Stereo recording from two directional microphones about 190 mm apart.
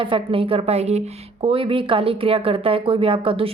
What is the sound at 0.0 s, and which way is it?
A woman's voice, 25° right (ahead or behind).